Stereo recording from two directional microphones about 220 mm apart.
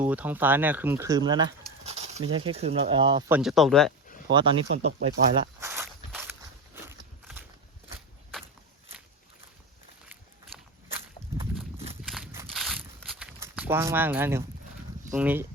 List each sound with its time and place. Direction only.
0.0 s speech: 5° right (ahead or behind); by 2.2 s 30° right (ahead or behind)
2.2 s speech: 80° right
2.5 s speech: 25° right (ahead or behind)
3.2 s speech: 5° right (ahead or behind)
4.3 s speech: 20° right (ahead or behind)
5.4 s walk: 10° right (ahead or behind)
7.9 s walk: centre (ahead or behind)
12.0 s a sound: centre (ahead or behind)
15.1 s speech: 5° right (ahead or behind)